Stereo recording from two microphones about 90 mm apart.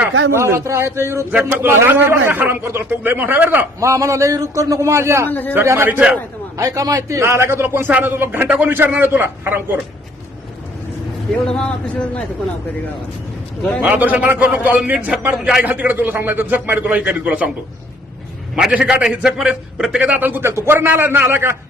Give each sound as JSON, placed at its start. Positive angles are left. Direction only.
{"t": 0.3, "sound": "a man's voice", "side_deg": -30}
{"t": 1.3, "sound": "a man's voice", "side_deg": -20}
{"t": 3.8, "sound": "a man's voice", "side_deg": -35}
{"t": 5.3, "sound": "a man's voice", "side_deg": 20}
{"t": 5.5, "sound": "a man's voice", "side_deg": -25}
{"t": 6.6, "sound": "a man's voice", "side_deg": -40}
{"t": 11.3, "sound": "a man's voice", "side_deg": 10}
{"t": 13.8, "sound": "a man's voice", "side_deg": -20}
{"t": 18.5, "sound": "a man's voice", "side_deg": -10}